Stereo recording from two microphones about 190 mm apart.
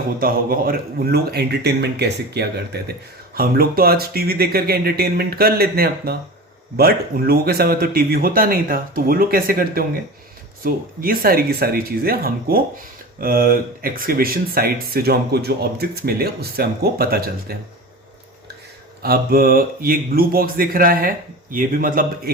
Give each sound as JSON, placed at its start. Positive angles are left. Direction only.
{"t": 0.2, "sound": "speech", "side_deg": -50}
{"t": 19.0, "sound": "speech", "side_deg": -50}